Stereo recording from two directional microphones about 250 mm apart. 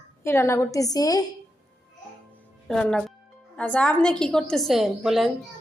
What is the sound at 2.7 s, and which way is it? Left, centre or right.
A woman's voice, centre.